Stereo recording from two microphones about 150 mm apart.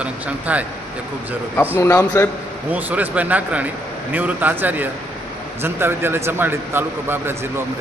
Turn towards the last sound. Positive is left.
turn(degrees=-15)  # may be behind; listen again after turning